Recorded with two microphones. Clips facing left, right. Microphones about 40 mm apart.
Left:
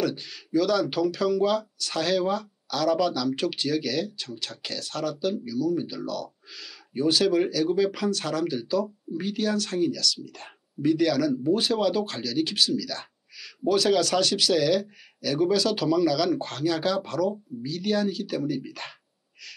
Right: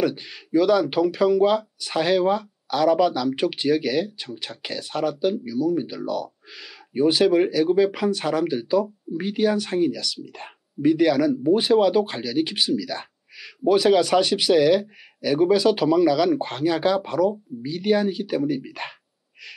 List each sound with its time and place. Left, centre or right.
0.0 s speech: centre